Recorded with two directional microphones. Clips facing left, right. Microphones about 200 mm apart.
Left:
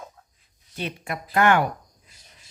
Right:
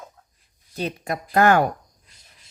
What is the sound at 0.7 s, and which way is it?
Speech, 40° right (ahead or behind).